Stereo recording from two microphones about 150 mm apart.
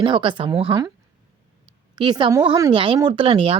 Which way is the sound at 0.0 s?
35° right (ahead or behind).